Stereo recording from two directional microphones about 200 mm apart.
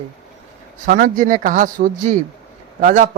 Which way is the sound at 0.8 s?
45° right (ahead or behind).